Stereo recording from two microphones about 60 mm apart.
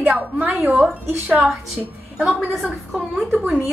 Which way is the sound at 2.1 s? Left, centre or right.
Centre.